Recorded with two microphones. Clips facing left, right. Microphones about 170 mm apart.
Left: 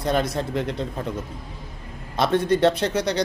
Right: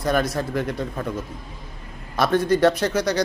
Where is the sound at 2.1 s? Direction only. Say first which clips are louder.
Right 1 dB; 25° left (ahead or behind).